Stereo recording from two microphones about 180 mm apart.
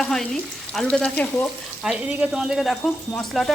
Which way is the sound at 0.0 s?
Centre (ahead or behind).